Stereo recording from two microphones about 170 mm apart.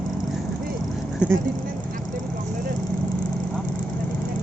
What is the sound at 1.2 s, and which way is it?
Speech, 5° right (ahead or behind).